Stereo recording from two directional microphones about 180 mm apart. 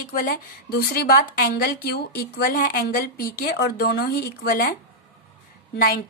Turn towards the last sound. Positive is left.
turn(degrees=55)  # may be behind; listen again after turning